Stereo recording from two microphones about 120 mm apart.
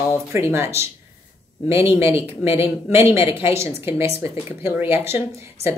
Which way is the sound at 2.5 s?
20° right (ahead or behind).